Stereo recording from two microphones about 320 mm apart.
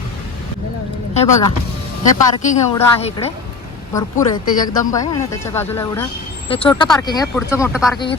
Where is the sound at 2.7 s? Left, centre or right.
Centre.